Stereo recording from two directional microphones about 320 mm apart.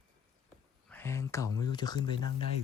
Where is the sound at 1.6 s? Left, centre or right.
Centre.